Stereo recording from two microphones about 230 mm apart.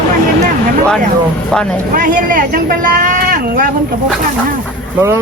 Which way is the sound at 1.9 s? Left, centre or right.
Right.